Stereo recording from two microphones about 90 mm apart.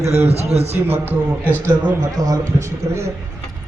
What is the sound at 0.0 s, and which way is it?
Speech, 30° right (ahead or behind).